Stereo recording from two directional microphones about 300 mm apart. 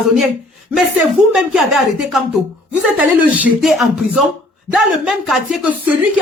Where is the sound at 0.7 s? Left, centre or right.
Centre.